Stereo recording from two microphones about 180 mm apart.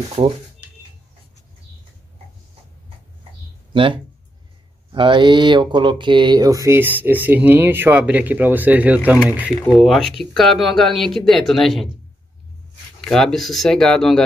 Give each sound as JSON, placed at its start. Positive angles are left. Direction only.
{"t": 0.2, "sound": "speech", "side_deg": -25}
{"t": 3.7, "sound": "speech", "side_deg": -30}
{"t": 13.0, "sound": "speech", "side_deg": 0}